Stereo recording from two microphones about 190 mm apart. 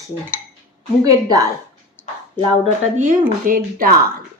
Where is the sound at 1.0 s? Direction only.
20° right (ahead or behind).